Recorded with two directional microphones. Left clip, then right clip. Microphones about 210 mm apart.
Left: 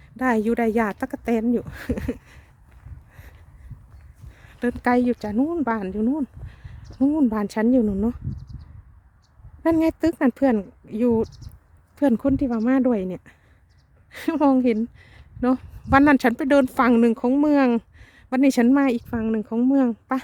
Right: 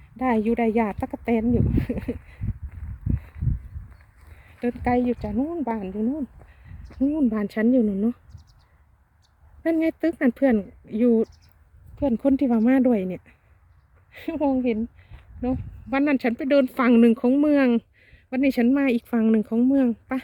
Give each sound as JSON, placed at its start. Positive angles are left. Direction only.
{"t": 0.2, "sound": "speech", "side_deg": 20}
{"t": 4.6, "sound": "speech", "side_deg": 30}
{"t": 7.0, "sound": "speech", "side_deg": 20}
{"t": 8.3, "sound": "a sound", "side_deg": -50}
{"t": 9.6, "sound": "speech", "side_deg": 15}
{"t": 14.1, "sound": "a woman's voice", "side_deg": 35}
{"t": 19.0, "sound": "speech", "side_deg": 0}